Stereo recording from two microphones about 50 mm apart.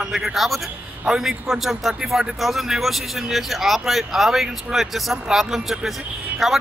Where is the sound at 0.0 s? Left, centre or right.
Centre.